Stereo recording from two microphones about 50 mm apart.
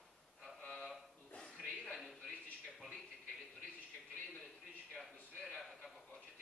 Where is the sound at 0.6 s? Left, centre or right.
Centre.